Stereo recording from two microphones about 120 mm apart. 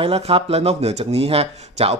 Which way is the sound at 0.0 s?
55° right (ahead or behind).